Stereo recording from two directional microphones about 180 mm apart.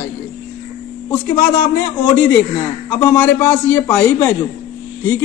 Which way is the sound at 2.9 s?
15° left (ahead or behind).